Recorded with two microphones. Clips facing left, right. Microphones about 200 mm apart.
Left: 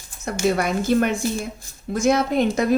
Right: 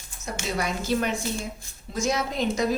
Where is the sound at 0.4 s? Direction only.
55° left (ahead or behind).